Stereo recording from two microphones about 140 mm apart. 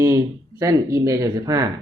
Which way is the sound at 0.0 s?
20° right (ahead or behind).